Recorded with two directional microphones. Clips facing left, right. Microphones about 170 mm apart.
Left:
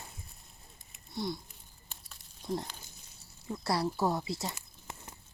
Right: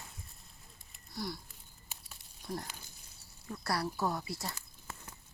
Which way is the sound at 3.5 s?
20° left (ahead or behind).